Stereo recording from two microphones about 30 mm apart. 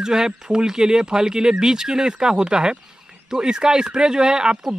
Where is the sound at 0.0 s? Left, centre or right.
Right.